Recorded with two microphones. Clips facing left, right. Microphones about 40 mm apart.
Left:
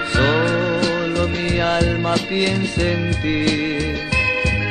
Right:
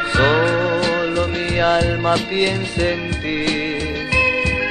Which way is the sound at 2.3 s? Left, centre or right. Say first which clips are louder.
Even; centre.